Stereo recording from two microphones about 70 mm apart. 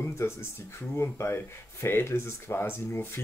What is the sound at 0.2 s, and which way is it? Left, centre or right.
Speech, left.